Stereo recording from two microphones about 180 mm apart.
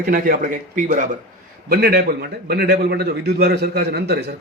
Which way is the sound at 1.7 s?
60° right (ahead or behind).